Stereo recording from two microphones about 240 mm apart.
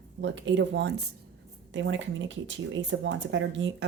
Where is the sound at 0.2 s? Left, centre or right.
Right.